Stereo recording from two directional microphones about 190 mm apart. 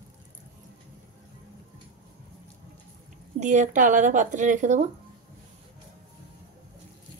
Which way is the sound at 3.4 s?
40° right (ahead or behind).